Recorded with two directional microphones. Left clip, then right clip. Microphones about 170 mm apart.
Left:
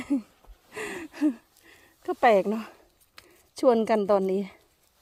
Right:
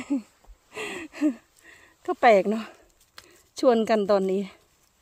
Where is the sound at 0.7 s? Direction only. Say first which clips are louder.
Right 1 dB; 5° left (ahead or behind).